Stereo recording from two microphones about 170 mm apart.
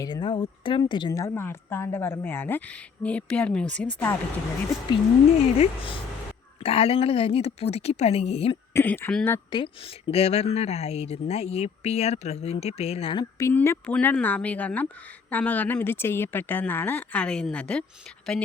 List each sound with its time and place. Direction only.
0.0 s speech: 25° left (ahead or behind); by 4.1 s 5° left (ahead or behind)
5.5 s a woman's voice: 30° left (ahead or behind)
8.7 s speech: 10° left (ahead or behind)
9.5 s a woman's voice: 30° left (ahead or behind)
13.4 s speech: 15° left (ahead or behind)